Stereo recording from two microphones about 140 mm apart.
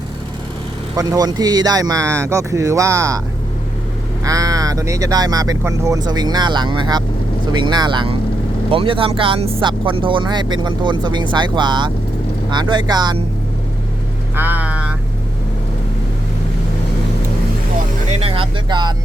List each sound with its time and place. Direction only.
0.9 s speech: 25° right (ahead or behind)
4.2 s speech: 25° right (ahead or behind)
14.3 s vehicle: 15° right (ahead or behind)
18.2 s speech: 40° right (ahead or behind)